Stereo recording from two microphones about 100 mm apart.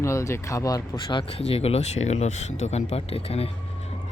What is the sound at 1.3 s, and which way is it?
Speech, 90° left.